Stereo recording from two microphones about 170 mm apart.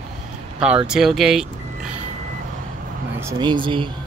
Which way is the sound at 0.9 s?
5° right (ahead or behind).